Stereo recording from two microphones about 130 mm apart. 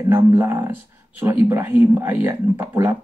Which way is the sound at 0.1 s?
15° right (ahead or behind).